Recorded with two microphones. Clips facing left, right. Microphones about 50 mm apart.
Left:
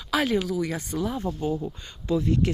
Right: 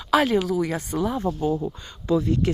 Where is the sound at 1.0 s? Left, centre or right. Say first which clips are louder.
Right 4 dB; right.